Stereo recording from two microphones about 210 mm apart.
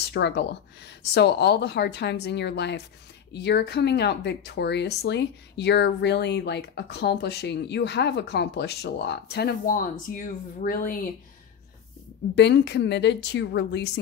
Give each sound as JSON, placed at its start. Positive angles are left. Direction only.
{"t": 0.0, "sound": "speech", "side_deg": 55}
{"t": 12.4, "sound": "a woman's voice", "side_deg": 55}